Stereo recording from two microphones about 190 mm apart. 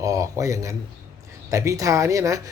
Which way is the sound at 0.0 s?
15° right (ahead or behind).